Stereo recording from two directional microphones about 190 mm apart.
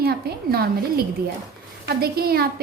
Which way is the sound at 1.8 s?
55° right (ahead or behind).